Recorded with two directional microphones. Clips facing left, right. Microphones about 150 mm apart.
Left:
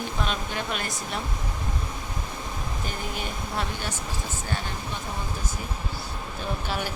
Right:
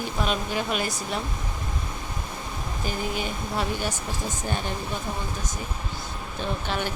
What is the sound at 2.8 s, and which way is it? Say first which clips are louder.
Speech: right 6 dB; centre (ahead or behind).